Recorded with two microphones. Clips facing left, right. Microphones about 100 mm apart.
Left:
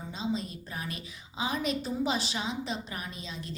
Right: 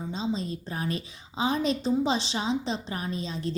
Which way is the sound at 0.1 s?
30° right (ahead or behind).